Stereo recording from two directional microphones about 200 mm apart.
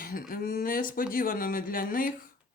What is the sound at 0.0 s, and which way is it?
Speech, 45° left (ahead or behind).